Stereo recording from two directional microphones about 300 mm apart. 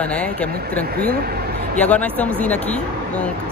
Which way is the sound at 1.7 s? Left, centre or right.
Centre.